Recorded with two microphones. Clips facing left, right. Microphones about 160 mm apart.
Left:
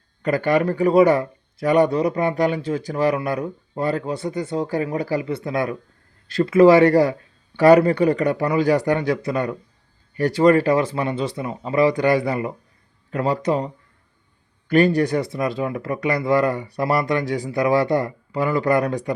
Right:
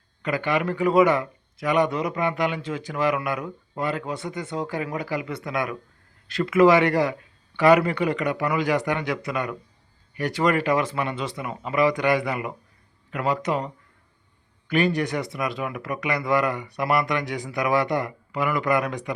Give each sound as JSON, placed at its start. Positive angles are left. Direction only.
{"t": 0.2, "sound": "a man's voice", "side_deg": 40}
{"t": 14.7, "sound": "a man's voice", "side_deg": 35}